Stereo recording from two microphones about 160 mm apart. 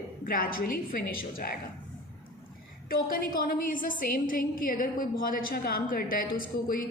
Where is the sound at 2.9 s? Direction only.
65° left (ahead or behind).